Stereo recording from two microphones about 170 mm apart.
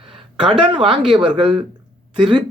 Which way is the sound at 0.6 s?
30° right (ahead or behind).